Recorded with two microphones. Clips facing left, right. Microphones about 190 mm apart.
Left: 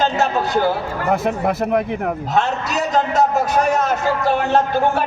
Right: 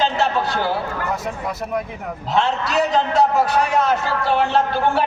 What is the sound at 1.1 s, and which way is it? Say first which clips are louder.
A man's voice: left 7 dB; 60° left (ahead or behind).